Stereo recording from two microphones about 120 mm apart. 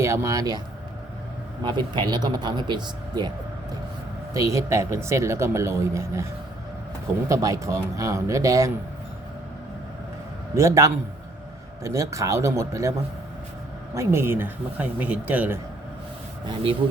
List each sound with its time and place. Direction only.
0.0 s speech: 25° right (ahead or behind)
1.6 s speech: 40° right (ahead or behind)
4.4 s a man's voice: 25° right (ahead or behind)
7.3 s a man's voice: 25° right (ahead or behind)
10.5 s a man's voice: 25° right (ahead or behind)
13.9 s speech: 25° right (ahead or behind)